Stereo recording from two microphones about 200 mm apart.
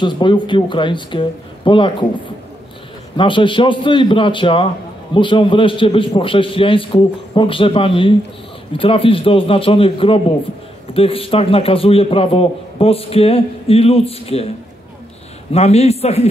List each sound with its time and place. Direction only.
0.0 s a man's voice: 25° left (ahead or behind)
15.5 s a man's voice: 30° left (ahead or behind)